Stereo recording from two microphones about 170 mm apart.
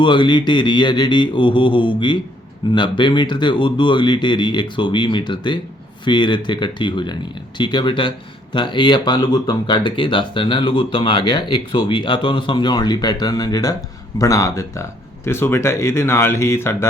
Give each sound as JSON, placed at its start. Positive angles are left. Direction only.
{"t": 0.0, "sound": "speech", "side_deg": 25}